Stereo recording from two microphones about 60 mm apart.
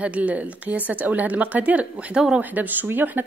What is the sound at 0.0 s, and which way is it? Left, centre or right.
Speech, right.